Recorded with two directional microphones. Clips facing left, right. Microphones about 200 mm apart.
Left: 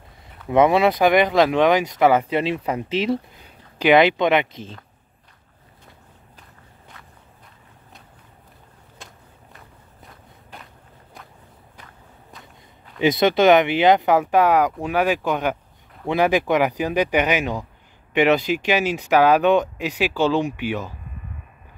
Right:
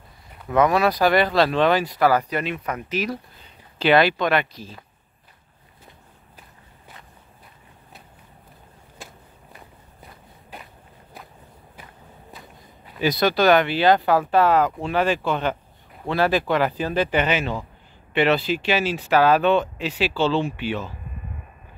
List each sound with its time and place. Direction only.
0.5 s speech: 25° left (ahead or behind)
3.4 s speech: 15° left (ahead or behind)
9.0 s walk: centre (ahead or behind)
11.7 s walk: 5° right (ahead or behind)
13.0 s speech: 20° left (ahead or behind)